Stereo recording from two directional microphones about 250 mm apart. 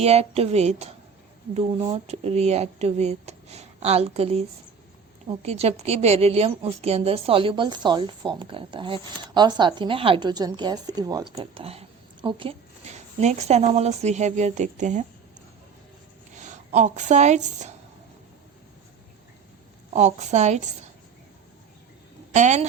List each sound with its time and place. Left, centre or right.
0.0 s a woman's voice: right
16.4 s a woman's voice: right
19.9 s a woman's voice: right
22.3 s speech: right